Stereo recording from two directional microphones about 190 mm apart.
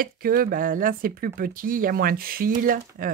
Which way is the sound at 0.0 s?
50° right (ahead or behind).